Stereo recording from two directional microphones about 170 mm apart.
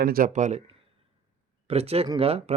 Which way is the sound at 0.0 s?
60° right (ahead or behind).